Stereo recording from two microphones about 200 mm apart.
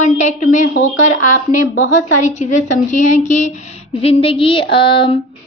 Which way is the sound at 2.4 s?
35° left (ahead or behind).